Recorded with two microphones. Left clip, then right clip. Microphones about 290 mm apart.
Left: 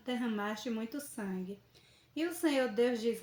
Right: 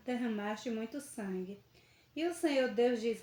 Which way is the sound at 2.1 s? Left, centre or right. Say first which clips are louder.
Even; left.